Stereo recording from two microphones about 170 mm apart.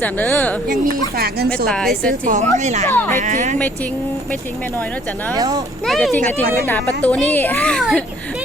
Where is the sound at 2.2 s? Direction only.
50° right (ahead or behind).